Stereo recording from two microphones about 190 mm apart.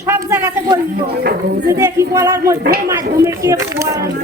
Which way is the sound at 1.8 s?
15° right (ahead or behind).